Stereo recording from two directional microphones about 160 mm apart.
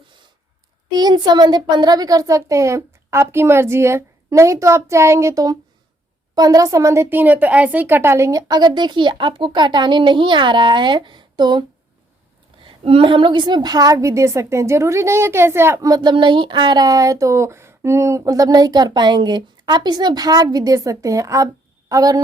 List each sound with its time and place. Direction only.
0.9 s a woman's voice: 25° right (ahead or behind)
12.6 s a woman's voice: 35° right (ahead or behind)